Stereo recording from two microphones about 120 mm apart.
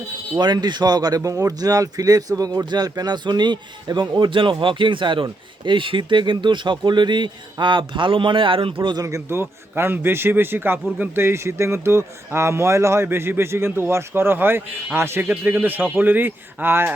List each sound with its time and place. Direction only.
0.3 s speech: 35° right (ahead or behind)
9.0 s speech: 20° right (ahead or behind)